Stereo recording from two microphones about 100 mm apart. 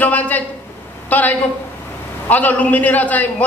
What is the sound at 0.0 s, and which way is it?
A man's voice, 15° left (ahead or behind).